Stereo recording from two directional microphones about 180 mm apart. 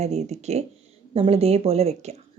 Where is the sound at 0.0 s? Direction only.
40° right (ahead or behind).